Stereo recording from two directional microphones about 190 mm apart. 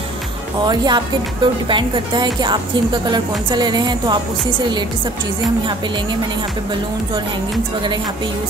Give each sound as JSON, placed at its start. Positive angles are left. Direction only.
{"t": 0.7, "sound": "speech", "side_deg": -25}